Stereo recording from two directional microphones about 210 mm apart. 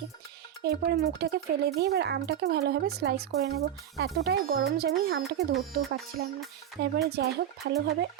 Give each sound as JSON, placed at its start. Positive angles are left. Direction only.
{"t": 0.6, "sound": "speech", "side_deg": -50}